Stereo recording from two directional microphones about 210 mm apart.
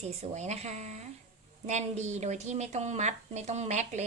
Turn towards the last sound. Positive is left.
turn(degrees=-30)  # may be behind; listen again after turning